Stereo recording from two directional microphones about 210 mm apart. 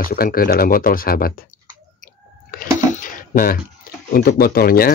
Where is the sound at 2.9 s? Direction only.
40° left (ahead or behind).